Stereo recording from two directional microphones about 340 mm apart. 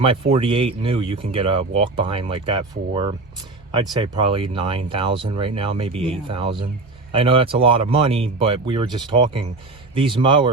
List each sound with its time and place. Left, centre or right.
0.0 s speech: centre